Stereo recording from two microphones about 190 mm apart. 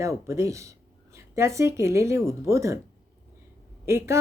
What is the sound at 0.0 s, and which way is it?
Speech, 15° right (ahead or behind).